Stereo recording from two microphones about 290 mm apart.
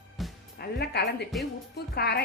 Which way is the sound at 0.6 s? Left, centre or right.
Left.